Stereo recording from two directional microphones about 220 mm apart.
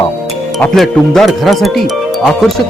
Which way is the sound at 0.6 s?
Centre (ahead or behind).